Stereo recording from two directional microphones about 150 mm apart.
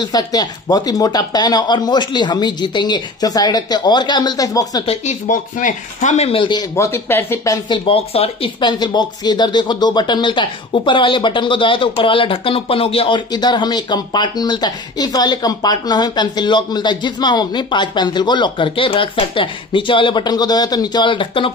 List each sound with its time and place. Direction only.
0.0 s speech: 25° left (ahead or behind)
5.2 s speech: 60° left (ahead or behind); by 6.6 s 35° left (ahead or behind)
6.8 s speech: 15° left (ahead or behind)
7.8 s speech: 40° left (ahead or behind)
13.3 s speech: 30° left (ahead or behind)